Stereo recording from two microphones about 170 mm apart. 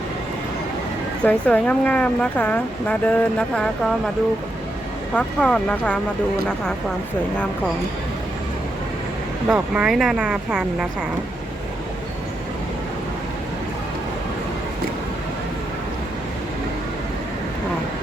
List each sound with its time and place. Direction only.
1.2 s speech: 10° left (ahead or behind)
5.1 s speech: 5° left (ahead or behind)
9.5 s speech: 5° right (ahead or behind)